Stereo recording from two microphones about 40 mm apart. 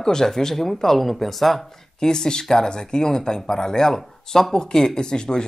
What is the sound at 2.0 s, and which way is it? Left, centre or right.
Speech, centre.